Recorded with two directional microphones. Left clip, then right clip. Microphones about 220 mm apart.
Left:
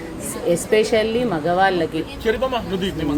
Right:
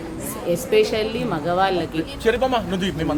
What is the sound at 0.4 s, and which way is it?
Speech, 5° left (ahead or behind).